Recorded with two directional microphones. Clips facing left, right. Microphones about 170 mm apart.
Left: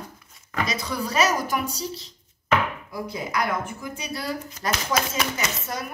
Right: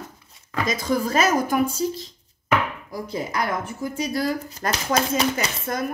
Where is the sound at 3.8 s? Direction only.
45° right (ahead or behind).